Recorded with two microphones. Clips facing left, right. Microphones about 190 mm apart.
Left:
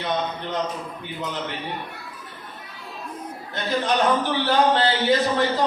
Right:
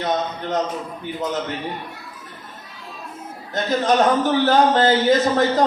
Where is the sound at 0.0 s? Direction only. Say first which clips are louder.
Right 3 dB; 45° right (ahead or behind).